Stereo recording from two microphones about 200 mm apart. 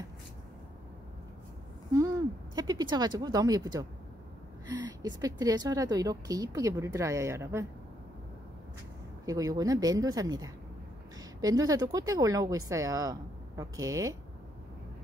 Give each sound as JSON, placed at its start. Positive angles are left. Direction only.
{"t": 2.0, "sound": "speech", "side_deg": -20}
{"t": 9.2, "sound": "speech", "side_deg": -15}